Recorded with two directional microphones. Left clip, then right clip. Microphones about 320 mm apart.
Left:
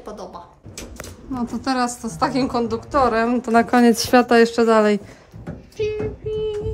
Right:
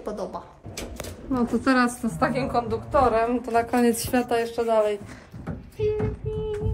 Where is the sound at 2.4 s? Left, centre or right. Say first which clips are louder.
Left 3 dB; left.